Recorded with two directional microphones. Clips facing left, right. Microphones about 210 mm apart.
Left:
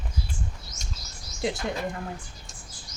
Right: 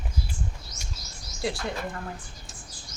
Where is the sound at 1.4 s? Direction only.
20° left (ahead or behind).